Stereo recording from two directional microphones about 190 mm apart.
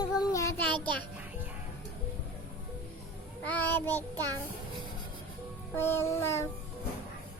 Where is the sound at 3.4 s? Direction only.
10° left (ahead or behind).